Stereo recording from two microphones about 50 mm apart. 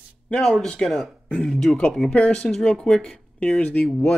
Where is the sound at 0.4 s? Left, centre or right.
Centre.